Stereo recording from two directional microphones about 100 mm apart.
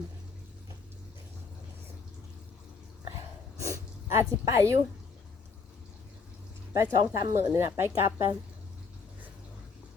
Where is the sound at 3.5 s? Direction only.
30° right (ahead or behind).